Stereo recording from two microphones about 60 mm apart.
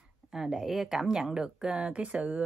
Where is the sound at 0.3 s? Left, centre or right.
Centre.